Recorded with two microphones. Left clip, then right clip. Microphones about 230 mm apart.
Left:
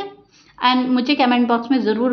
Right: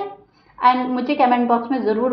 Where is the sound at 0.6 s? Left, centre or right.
Left.